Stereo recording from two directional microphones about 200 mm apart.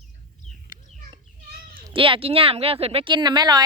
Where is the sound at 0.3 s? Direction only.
40° left (ahead or behind).